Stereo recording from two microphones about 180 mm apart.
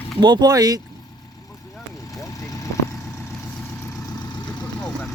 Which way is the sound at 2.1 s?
20° left (ahead or behind).